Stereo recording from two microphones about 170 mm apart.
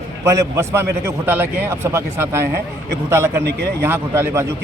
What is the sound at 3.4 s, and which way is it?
Speech, 85° right.